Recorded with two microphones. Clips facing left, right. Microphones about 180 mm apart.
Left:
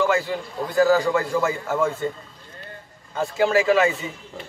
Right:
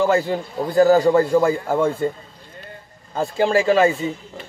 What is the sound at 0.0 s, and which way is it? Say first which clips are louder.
A man's voice: right 4 dB; 30° right (ahead or behind).